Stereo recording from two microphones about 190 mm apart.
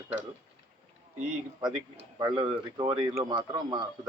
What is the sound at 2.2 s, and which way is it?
Speech, 25° right (ahead or behind).